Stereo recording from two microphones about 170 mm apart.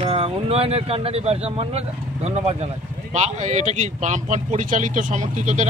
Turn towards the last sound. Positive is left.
turn(degrees=-45)  # may be behind; listen again after turning